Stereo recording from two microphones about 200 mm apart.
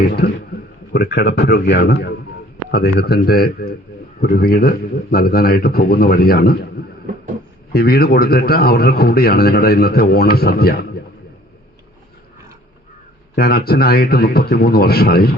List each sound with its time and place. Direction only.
0.9 s a man's voice: 55° left (ahead or behind)
7.7 s a man's voice: 50° left (ahead or behind)
13.3 s a man's voice: 50° left (ahead or behind)